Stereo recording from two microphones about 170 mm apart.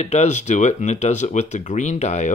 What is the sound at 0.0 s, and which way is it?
Speech, 40° left (ahead or behind).